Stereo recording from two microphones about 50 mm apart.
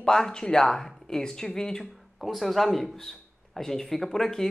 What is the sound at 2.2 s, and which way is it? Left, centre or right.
A woman's voice, centre.